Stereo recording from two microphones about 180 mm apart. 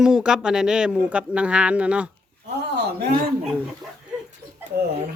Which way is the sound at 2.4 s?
65° right (ahead or behind).